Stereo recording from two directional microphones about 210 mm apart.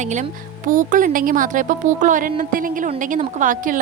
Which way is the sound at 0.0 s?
35° right (ahead or behind).